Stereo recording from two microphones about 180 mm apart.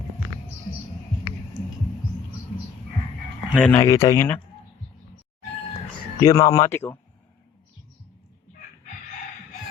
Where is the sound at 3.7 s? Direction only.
15° left (ahead or behind).